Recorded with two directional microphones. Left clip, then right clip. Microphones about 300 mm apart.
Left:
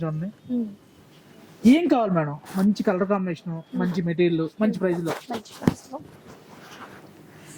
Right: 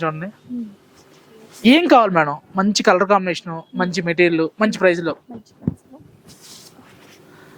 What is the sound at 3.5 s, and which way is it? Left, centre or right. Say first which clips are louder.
Speech: right 7 dB; centre.